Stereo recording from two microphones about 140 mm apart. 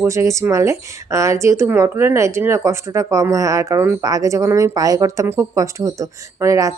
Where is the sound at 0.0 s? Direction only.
20° right (ahead or behind).